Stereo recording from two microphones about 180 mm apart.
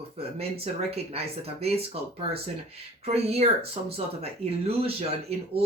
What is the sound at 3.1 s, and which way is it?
Speech, 35° right (ahead or behind).